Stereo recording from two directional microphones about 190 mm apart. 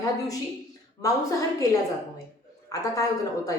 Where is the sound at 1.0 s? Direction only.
20° left (ahead or behind).